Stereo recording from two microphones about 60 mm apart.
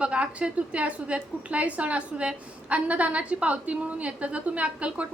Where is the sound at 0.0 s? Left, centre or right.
Centre.